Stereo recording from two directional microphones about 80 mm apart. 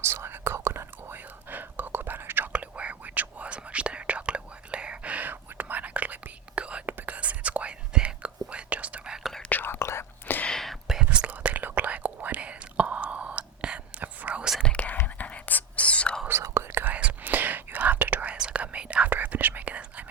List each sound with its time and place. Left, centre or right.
0.0 s whispering: right; by 9.3 s centre
9.5 s whispering: left
10.4 s whispering: centre
11.0 s whispering: centre
14.6 s whispering: centre
16.3 s whispering: right